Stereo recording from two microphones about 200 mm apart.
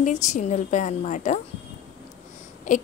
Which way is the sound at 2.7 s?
40° left (ahead or behind).